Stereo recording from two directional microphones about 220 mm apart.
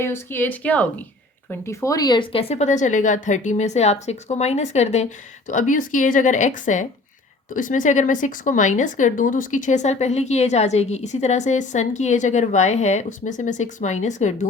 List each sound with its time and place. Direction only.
0.0 s a woman's voice: 10° left (ahead or behind); by 14.3 s 35° left (ahead or behind)